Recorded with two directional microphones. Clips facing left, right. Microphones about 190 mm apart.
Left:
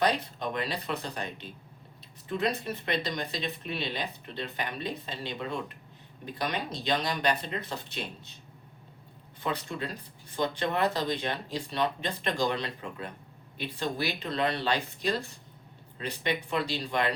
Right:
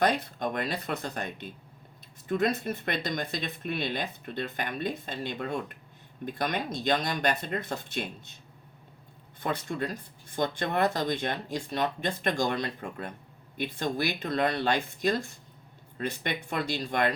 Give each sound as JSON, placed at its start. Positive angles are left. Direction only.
{"t": 0.0, "sound": "speech", "side_deg": -50}
{"t": 9.4, "sound": "speech", "side_deg": -50}